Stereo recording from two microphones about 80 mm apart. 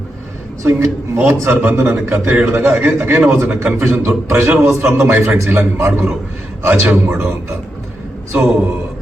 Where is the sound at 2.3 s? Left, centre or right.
Centre.